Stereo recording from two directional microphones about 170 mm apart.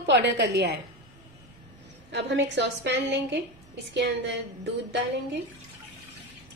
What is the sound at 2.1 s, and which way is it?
A woman's voice, 90° right.